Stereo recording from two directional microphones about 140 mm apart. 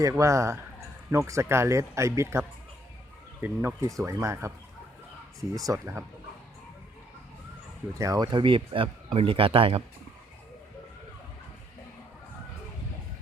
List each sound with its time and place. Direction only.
0.0 s speech: 20° right (ahead or behind)
7.9 s speech: 25° right (ahead or behind); by 9.8 s 40° right (ahead or behind)